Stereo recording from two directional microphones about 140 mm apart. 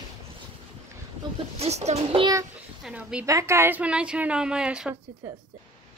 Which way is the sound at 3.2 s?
20° right (ahead or behind).